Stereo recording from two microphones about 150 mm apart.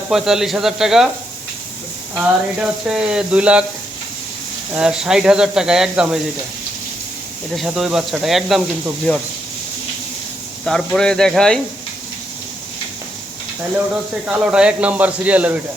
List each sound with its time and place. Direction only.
0.1 s speech: 5° right (ahead or behind)
2.1 s speech: 5° right (ahead or behind)
4.7 s speech: 5° right (ahead or behind)
7.5 s speech: 5° right (ahead or behind)
10.7 s speech: 5° left (ahead or behind)
13.9 s speech: 5° right (ahead or behind)